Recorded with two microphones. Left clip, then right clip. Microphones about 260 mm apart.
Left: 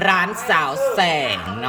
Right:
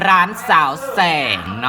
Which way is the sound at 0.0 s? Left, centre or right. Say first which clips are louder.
Right 4 dB; centre.